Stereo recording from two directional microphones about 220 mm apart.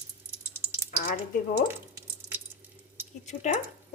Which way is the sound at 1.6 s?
10° right (ahead or behind).